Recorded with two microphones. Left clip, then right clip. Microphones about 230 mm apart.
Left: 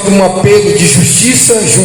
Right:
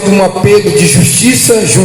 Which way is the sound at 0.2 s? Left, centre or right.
Right.